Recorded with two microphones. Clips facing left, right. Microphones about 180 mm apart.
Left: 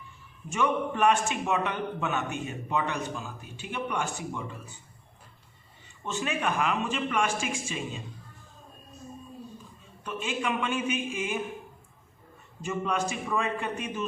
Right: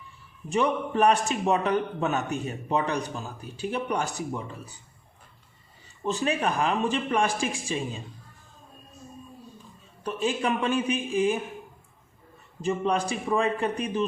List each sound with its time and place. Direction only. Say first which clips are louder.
0.5 s a man's voice: right 3 dB; 35° right (ahead or behind)
6.0 s a man's voice: right 5 dB; 35° right (ahead or behind)
10.0 s a man's voice: right 5 dB; 35° right (ahead or behind)
12.6 s a man's voice: right 4 dB; 35° right (ahead or behind)